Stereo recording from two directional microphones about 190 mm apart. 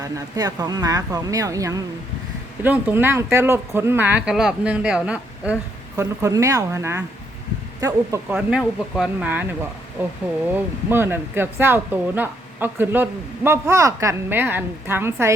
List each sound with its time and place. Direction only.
0.0 s speech: 20° right (ahead or behind)
6.0 s speech: 15° right (ahead or behind)